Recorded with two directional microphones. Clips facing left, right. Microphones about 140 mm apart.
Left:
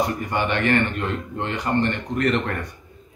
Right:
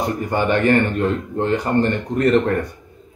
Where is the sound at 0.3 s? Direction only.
40° right (ahead or behind).